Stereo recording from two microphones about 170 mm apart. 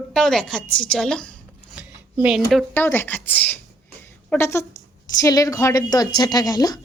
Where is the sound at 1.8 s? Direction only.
5° right (ahead or behind).